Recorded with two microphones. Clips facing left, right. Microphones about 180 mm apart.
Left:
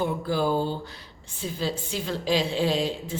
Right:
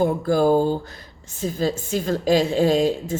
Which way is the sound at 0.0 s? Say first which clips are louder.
Right 7 dB; 45° right (ahead or behind).